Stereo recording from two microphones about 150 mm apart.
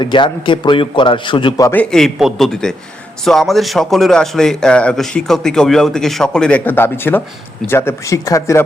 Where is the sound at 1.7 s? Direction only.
5° left (ahead or behind).